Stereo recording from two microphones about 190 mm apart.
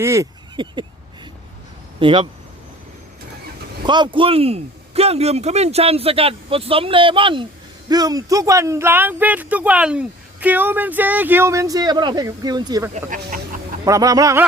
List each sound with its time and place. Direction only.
0.0 s a sound: 15° right (ahead or behind)
2.0 s speech: 25° right (ahead or behind)
3.8 s speech: 25° right (ahead or behind)